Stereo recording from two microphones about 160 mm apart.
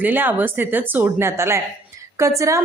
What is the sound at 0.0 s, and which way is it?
A woman's voice, 10° right (ahead or behind).